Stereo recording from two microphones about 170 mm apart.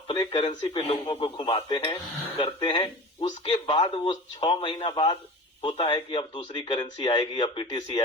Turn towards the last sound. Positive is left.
turn(degrees=25)  # may be behind; listen again after turning